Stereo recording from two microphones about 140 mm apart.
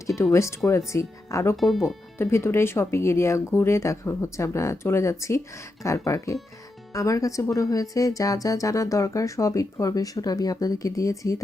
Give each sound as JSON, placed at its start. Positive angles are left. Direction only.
{"t": 0.2, "sound": "speech", "side_deg": 20}
{"t": 1.5, "sound": "speech", "side_deg": 0}
{"t": 2.1, "sound": "speech", "side_deg": 15}